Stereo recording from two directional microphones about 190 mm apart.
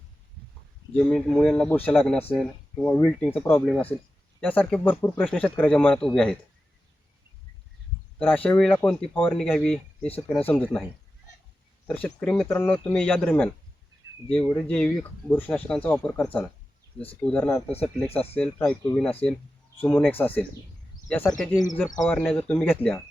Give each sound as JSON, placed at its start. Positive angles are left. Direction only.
{"t": 0.9, "sound": "speech", "side_deg": 5}
{"t": 8.4, "sound": "speech", "side_deg": 5}
{"t": 12.0, "sound": "speech", "side_deg": 5}
{"t": 21.8, "sound": "speech", "side_deg": 20}
{"t": 22.1, "sound": "speech", "side_deg": 10}